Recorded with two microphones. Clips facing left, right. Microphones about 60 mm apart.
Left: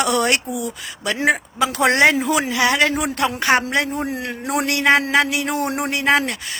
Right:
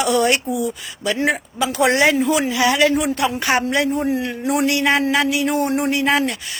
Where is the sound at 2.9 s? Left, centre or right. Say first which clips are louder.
Right 2 dB; left.